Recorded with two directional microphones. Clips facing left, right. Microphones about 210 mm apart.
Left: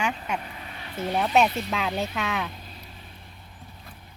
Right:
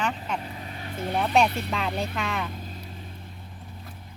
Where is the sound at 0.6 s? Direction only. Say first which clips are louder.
Right 3 dB; 40° right (ahead or behind).